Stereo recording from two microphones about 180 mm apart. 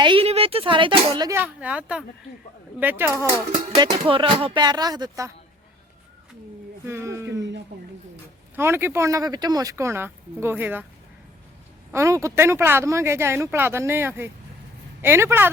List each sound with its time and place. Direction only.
0.0 s speech: 30° right (ahead or behind)
1.4 s speech: 5° right (ahead or behind)
3.8 s speech: 25° right (ahead or behind)
6.8 s speech: 15° right (ahead or behind)
8.5 s speech: 15° right (ahead or behind)
11.9 s speech: 15° right (ahead or behind)